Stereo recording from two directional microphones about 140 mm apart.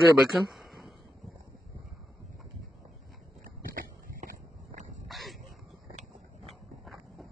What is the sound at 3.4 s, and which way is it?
Biting, 75° right (ahead or behind).